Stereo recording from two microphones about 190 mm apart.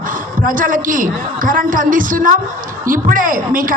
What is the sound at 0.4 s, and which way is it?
A man's voice, 45° right (ahead or behind).